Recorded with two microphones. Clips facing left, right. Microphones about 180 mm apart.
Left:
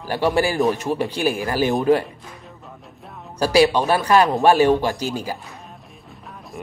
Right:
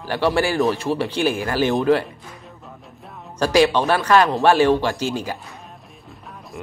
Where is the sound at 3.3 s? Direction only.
10° left (ahead or behind).